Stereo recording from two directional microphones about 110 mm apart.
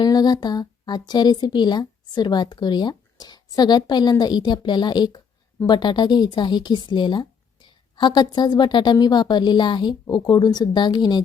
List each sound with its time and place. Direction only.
0.0 s a woman's voice: 40° left (ahead or behind)